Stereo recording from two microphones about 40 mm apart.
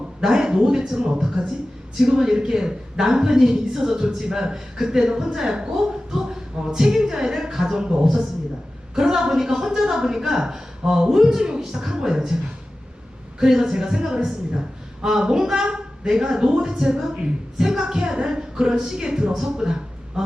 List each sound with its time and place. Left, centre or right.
0.2 s speech: centre
13.4 s a woman's voice: centre